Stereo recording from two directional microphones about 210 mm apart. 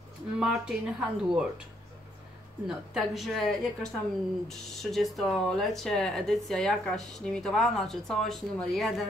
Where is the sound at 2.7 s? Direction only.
Centre (ahead or behind).